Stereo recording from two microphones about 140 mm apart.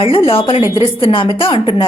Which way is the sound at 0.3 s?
40° left (ahead or behind).